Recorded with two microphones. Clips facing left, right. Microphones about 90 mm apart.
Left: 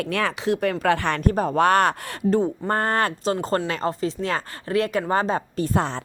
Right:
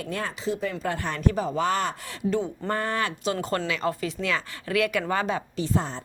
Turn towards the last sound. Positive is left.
turn(degrees=50)  # may be behind; listen again after turning